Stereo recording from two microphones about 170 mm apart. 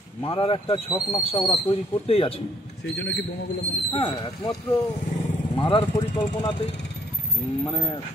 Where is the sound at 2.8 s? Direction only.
90° left.